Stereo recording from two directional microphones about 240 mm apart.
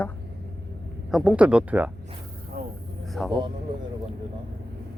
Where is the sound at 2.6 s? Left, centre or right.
Right.